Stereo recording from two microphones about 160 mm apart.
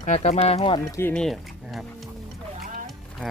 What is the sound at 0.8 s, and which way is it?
Speech, 15° left (ahead or behind).